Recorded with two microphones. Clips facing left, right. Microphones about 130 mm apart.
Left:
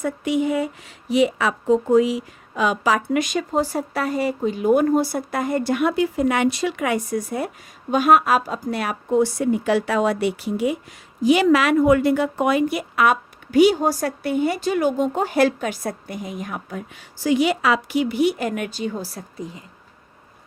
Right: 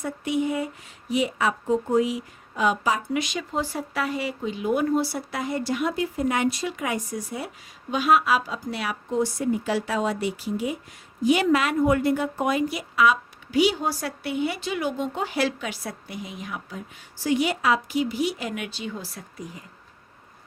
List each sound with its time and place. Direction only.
0.0 s speech: 90° left; by 10.8 s 65° left (ahead or behind)
11.2 s a woman's voice: 90° left; by 16.8 s 50° left (ahead or behind)
16.9 s speech: 90° left; by 19.5 s 35° left (ahead or behind)